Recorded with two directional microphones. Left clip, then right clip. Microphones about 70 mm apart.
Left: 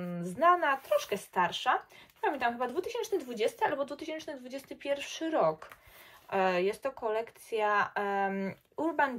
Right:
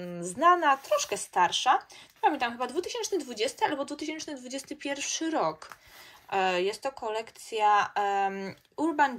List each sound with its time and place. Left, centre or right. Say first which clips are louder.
0.0 s speech: right 3 dB; right; by 9.0 s centre